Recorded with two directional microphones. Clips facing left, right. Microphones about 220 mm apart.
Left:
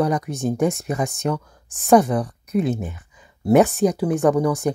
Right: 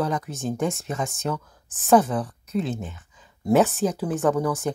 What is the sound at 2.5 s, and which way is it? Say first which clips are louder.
Speech: left 6 dB; 60° left (ahead or behind).